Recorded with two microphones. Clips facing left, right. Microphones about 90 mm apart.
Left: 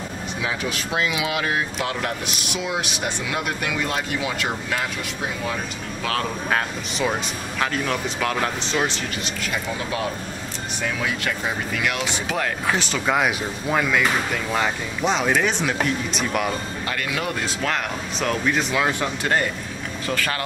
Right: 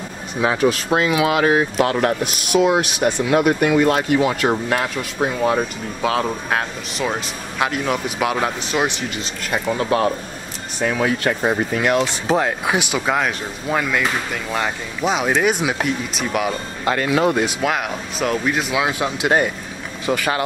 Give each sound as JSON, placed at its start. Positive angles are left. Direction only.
{"t": 0.4, "sound": "speech", "side_deg": -40}
{"t": 6.5, "sound": "speech", "side_deg": -5}
{"t": 9.4, "sound": "speech", "side_deg": -50}
{"t": 10.8, "sound": "speech", "side_deg": -35}
{"t": 12.3, "sound": "speech", "side_deg": -20}
{"t": 13.1, "sound": "speech", "side_deg": 0}
{"t": 16.8, "sound": "speech", "side_deg": -30}
{"t": 17.6, "sound": "speech", "side_deg": -10}